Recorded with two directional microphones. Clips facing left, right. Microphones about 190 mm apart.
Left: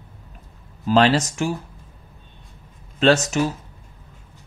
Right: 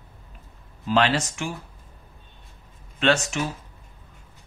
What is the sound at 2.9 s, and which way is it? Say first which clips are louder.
Speech: left 5 dB; 40° left (ahead or behind).